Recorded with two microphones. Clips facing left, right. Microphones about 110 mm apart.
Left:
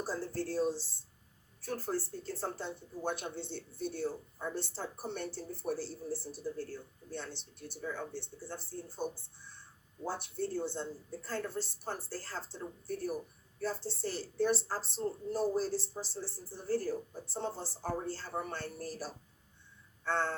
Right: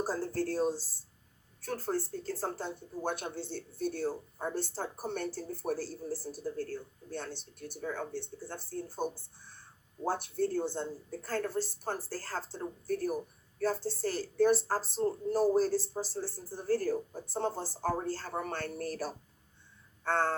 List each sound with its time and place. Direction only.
0.0 s speech: 45° right (ahead or behind)
20.1 s speech: 45° right (ahead or behind)